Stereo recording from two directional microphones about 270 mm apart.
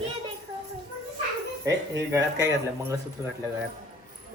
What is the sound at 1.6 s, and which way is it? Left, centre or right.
Speech, centre.